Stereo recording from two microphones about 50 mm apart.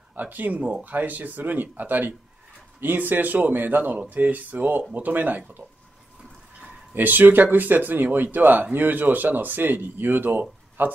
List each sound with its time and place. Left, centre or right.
0.1 s speech: right
6.9 s speech: right